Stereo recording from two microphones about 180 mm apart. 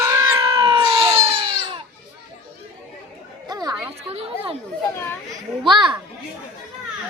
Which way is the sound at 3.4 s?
20° right (ahead or behind).